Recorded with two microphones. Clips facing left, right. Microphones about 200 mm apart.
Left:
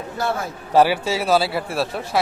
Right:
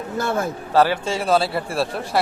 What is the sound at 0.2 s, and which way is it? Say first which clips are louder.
Speech: right 1 dB; 50° right (ahead or behind).